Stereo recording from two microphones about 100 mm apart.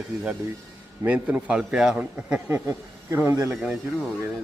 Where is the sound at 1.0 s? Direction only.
15° right (ahead or behind).